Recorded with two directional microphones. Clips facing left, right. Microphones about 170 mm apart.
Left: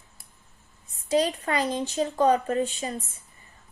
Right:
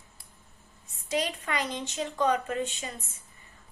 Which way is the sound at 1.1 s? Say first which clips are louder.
Left 6 dB; 35° left (ahead or behind).